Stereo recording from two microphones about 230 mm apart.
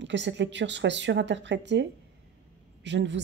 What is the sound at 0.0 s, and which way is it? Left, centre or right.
A woman's voice, right.